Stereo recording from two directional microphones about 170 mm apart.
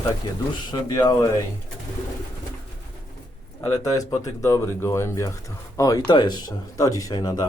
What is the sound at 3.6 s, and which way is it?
Speech, 15° left (ahead or behind).